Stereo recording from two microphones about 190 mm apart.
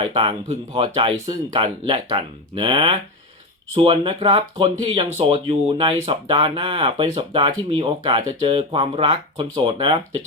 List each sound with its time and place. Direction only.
0.0 s speech: 25° right (ahead or behind)